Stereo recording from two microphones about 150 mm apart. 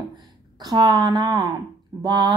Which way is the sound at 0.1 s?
25° right (ahead or behind).